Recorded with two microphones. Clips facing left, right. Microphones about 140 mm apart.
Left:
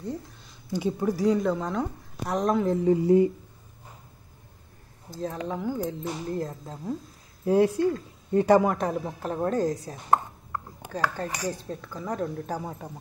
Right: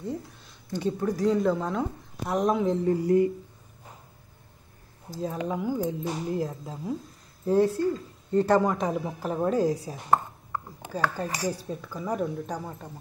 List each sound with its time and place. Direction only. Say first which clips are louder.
0.0 s a woman's voice: right 1 dB; 5° right (ahead or behind)
0.7 s a woman's voice: left 1 dB; 10° left (ahead or behind)
2.8 s speech: left 5 dB; 20° left (ahead or behind)
5.1 s speech: right 1 dB; 10° right (ahead or behind)
7.4 s speech: left 1 dB; 15° left (ahead or behind)
8.7 s a woman's voice: even; centre (ahead or behind)
11.1 s speech: right 1 dB; 10° right (ahead or behind)
12.4 s speech: left 2 dB; 10° left (ahead or behind)